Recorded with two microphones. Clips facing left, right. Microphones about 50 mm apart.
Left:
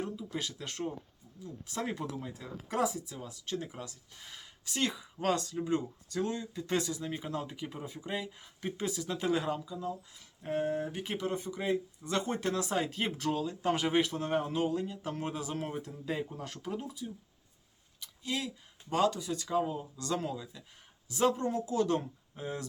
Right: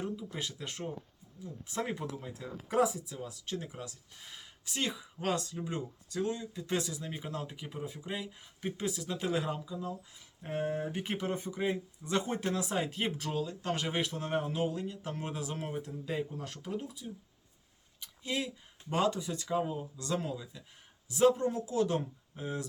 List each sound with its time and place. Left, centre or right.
0.0 s speech: centre
11.6 s speech: centre
18.0 s speech: right; by 22.6 s centre